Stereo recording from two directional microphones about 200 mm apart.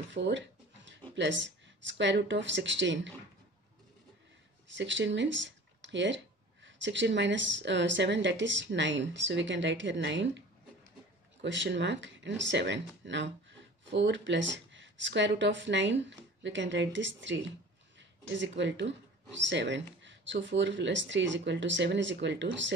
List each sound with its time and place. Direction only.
0.1 s a sound: 60° right (ahead or behind)
1.1 s speech: 65° right (ahead or behind)
4.7 s speech: 65° right (ahead or behind)
11.4 s speech: 65° right (ahead or behind)